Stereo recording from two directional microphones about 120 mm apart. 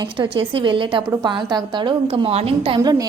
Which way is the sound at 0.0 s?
45° right (ahead or behind).